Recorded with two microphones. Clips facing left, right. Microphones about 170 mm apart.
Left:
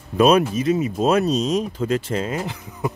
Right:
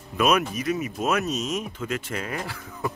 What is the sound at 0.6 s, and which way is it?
Speech, 25° left (ahead or behind).